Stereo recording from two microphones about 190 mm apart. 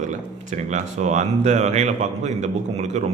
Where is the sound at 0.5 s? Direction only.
40° right (ahead or behind).